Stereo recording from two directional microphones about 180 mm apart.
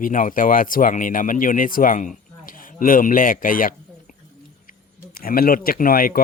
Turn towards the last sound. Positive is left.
turn(degrees=55)  # may be behind; listen again after turning